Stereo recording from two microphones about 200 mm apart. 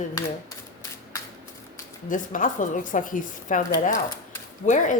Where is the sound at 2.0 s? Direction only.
40° left (ahead or behind).